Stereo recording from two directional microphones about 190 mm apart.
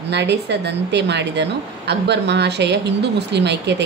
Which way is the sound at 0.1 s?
65° right (ahead or behind).